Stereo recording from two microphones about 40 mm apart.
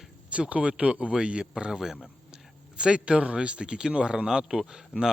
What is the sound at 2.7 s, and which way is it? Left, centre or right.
Speech, right.